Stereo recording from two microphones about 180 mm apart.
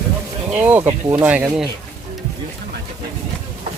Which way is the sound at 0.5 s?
10° right (ahead or behind).